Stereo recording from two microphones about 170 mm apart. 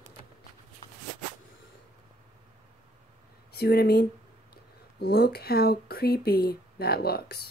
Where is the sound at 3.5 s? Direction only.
70° left (ahead or behind).